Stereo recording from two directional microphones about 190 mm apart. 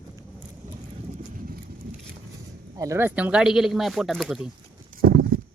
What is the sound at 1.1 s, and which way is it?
Horse, 50° right (ahead or behind).